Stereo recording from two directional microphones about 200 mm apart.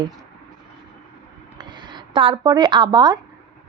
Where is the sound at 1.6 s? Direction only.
20° right (ahead or behind).